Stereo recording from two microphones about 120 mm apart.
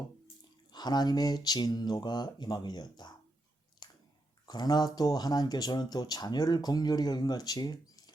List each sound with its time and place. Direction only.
0.7 s speech: 35° left (ahead or behind)
3.8 s chewing: 35° left (ahead or behind)
4.4 s speech: 35° left (ahead or behind)